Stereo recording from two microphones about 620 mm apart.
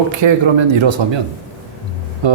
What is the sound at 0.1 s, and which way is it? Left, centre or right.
Speech, right.